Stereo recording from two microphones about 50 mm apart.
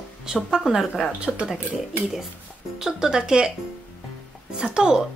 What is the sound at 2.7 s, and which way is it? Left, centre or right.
Speech, centre.